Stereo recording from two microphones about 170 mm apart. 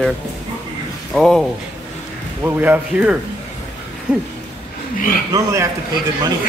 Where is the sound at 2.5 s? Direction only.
10° right (ahead or behind).